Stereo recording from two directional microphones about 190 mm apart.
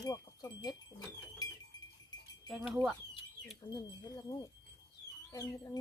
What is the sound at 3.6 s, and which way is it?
Speech, 25° left (ahead or behind).